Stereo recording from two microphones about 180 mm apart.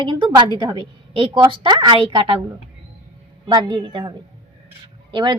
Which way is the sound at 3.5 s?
30° right (ahead or behind).